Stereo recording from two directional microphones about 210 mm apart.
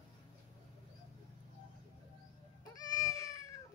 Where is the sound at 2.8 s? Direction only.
15° left (ahead or behind).